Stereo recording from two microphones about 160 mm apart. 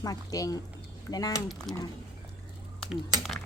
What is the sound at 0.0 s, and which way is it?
Speech, 20° left (ahead or behind).